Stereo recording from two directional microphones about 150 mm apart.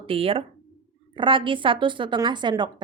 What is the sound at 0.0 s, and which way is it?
Speech, 40° right (ahead or behind).